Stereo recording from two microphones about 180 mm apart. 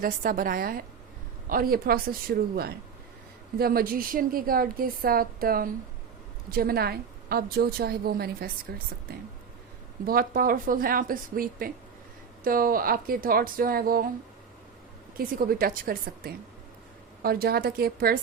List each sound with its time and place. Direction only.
0.0 s a woman's voice: 50° right (ahead or behind)
10.1 s a woman's voice: 55° right (ahead or behind)
15.2 s a woman's voice: 55° right (ahead or behind)